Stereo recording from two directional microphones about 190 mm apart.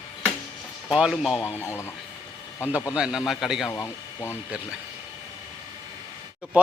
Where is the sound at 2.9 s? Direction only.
5° right (ahead or behind).